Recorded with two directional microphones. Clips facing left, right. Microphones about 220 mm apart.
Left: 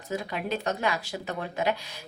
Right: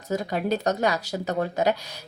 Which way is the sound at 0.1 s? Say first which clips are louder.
Right 6 dB; 40° right (ahead or behind).